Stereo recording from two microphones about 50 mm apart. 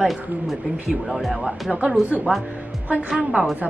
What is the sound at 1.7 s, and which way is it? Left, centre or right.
A woman's voice, right.